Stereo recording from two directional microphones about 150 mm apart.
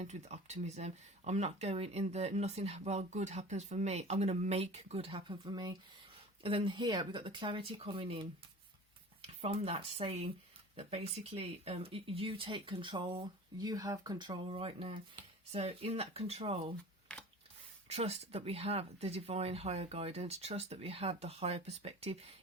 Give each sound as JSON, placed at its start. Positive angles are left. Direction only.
{"t": 0.0, "sound": "speech", "side_deg": -50}
{"t": 17.1, "sound": "a sound", "side_deg": 5}
{"t": 17.8, "sound": "speech", "side_deg": -45}